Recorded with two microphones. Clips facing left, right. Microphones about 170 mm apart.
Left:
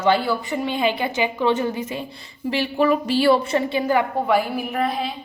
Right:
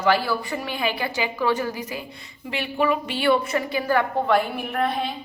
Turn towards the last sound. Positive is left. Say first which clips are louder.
# left 1 dB
turn(degrees=0)  # may be behind; listen again after turning